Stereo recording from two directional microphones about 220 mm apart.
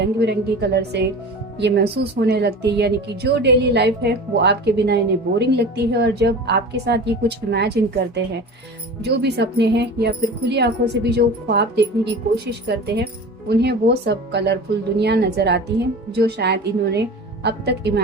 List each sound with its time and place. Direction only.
0.0 s speech: 50° right (ahead or behind)